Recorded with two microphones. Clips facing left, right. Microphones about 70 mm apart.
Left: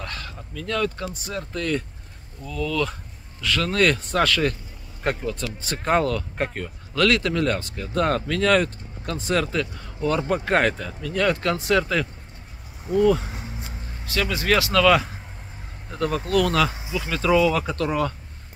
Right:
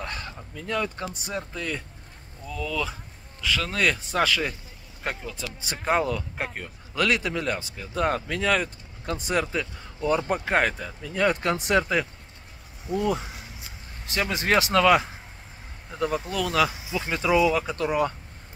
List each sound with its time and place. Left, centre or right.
0.0 s a sound: right
1.2 s speech: centre
8.6 s speech: centre
10.4 s speech: centre
13.3 s a sound: left
14.0 s speech: right
16.0 s speech: centre
16.9 s speech: right
17.2 s speech: centre